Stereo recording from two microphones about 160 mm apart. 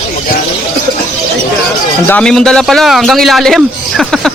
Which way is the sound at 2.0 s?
5° left (ahead or behind).